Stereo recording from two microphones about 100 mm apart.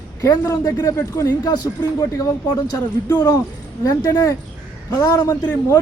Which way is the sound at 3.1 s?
40° left (ahead or behind).